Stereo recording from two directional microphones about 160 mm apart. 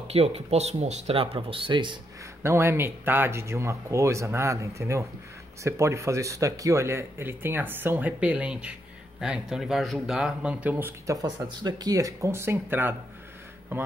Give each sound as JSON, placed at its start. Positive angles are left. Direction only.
{"t": 0.1, "sound": "speech", "side_deg": -40}
{"t": 2.4, "sound": "speech", "side_deg": -15}